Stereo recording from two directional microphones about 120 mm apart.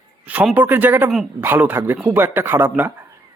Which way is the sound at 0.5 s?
15° right (ahead or behind).